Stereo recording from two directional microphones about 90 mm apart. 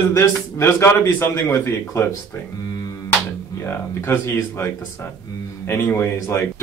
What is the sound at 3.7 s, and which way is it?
A man's voice, 30° left (ahead or behind).